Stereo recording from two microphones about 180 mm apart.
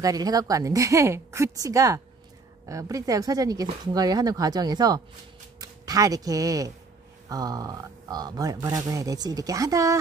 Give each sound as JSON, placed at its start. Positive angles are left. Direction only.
{"t": 0.0, "sound": "speech", "side_deg": -20}